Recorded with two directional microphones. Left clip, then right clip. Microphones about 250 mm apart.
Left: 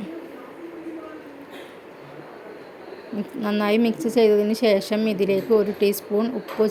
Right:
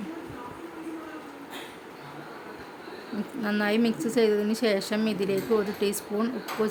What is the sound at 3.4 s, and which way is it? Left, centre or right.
Speech, centre.